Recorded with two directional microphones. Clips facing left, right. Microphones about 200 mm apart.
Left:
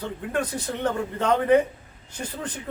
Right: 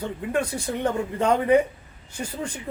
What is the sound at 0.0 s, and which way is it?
A man's voice, 10° right (ahead or behind).